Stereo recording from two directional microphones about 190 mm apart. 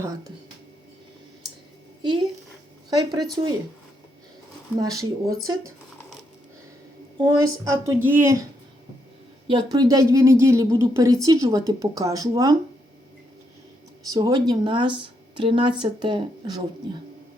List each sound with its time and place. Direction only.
2.0 s a woman's voice: 25° right (ahead or behind)
3.4 s a woman's voice: 20° right (ahead or behind)
4.8 s a woman's voice: 20° right (ahead or behind)
7.2 s a woman's voice: 20° right (ahead or behind)
9.5 s a woman's voice: 25° right (ahead or behind)
14.1 s a woman's voice: 20° right (ahead or behind)